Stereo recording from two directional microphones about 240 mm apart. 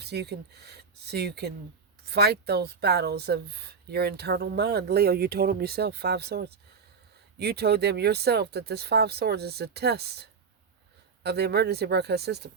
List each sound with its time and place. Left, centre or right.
0.0 s speech: right